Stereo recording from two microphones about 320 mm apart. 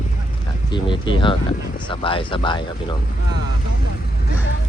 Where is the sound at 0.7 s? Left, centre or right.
Centre.